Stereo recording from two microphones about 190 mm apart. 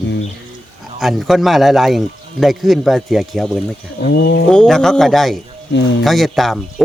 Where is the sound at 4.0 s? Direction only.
55° left (ahead or behind).